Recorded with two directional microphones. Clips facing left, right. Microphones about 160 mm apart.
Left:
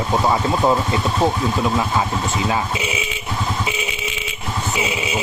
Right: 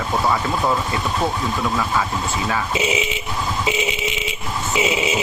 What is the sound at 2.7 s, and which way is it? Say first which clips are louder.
Speech: right 4 dB; 20° right (ahead or behind).